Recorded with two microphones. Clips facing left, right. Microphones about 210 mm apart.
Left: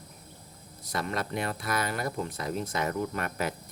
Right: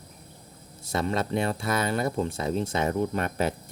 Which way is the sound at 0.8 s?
25° right (ahead or behind).